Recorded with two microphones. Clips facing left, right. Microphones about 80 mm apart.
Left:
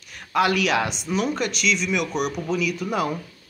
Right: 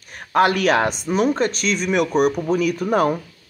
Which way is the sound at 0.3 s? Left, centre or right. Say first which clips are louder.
Right 4 dB; right.